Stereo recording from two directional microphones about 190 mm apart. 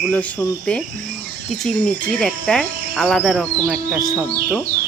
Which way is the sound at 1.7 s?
Centre (ahead or behind).